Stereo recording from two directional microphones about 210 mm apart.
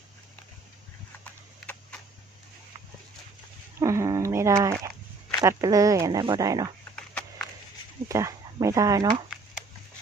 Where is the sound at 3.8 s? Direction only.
15° right (ahead or behind).